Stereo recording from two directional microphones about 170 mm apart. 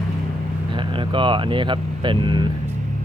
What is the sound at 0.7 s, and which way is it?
Speech, 30° right (ahead or behind).